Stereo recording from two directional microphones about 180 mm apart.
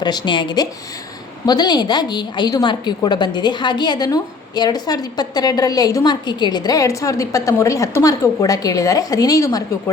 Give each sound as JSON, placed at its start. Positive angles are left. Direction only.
{"t": 0.0, "sound": "a woman's voice", "side_deg": 25}